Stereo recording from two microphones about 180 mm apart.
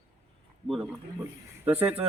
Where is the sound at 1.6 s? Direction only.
10° right (ahead or behind).